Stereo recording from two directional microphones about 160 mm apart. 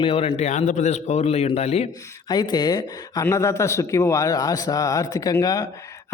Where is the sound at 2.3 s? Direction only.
25° left (ahead or behind).